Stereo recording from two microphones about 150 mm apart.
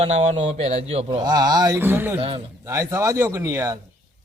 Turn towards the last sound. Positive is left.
turn(degrees=-20)  # may be behind; listen again after turning